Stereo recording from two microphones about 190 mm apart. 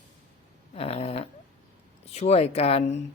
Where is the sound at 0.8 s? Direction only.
30° left (ahead or behind).